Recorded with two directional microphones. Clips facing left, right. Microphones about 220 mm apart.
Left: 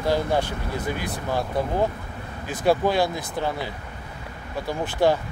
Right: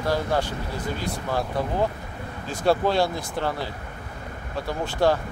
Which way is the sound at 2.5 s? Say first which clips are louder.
Left 1 dB; 15° left (ahead or behind).